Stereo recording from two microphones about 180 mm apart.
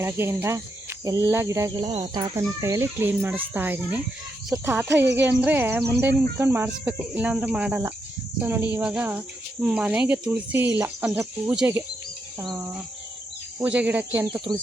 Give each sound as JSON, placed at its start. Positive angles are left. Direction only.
{"t": 0.0, "sound": "speech", "side_deg": -15}